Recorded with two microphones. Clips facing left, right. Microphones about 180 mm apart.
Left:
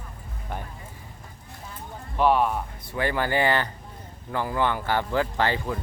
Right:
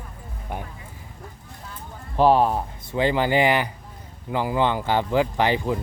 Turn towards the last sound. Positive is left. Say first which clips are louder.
# right 4 dB
turn(degrees=-15)  # may be behind; listen again after turning